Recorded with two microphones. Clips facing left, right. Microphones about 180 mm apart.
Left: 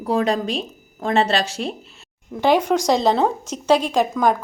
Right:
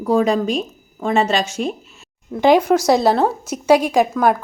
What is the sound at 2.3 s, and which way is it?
Speech, 10° right (ahead or behind).